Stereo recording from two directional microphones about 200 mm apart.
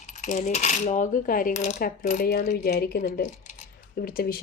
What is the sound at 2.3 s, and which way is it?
Speech, 50° left (ahead or behind).